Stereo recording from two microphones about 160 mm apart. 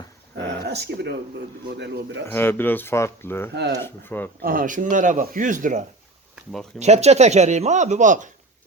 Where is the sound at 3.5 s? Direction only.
90° right.